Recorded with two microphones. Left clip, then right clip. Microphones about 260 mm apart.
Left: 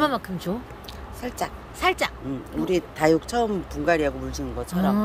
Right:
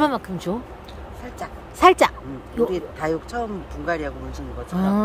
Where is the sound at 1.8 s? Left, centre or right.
Centre.